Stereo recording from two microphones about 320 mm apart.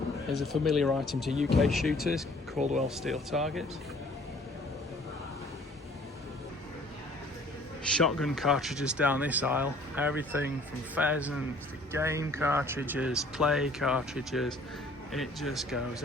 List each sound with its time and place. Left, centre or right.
0.3 s speech: centre
2.6 s speech: right
2.9 s speech: centre
7.9 s speech: centre